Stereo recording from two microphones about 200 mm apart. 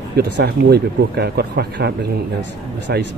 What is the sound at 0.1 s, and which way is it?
Speech, 55° right (ahead or behind).